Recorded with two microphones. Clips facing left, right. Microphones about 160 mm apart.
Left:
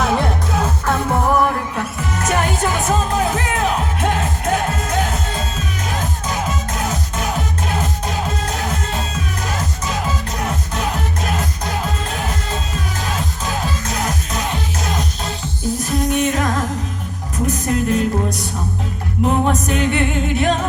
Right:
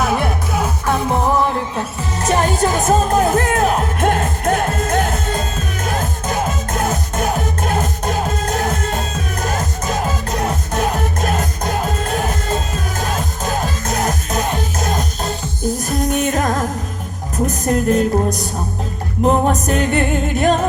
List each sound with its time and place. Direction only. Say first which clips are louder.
0.0 s music: even; 5° right (ahead or behind); by 18.0 s 45° right (ahead or behind)
19.2 s music: right 2 dB; 40° right (ahead or behind)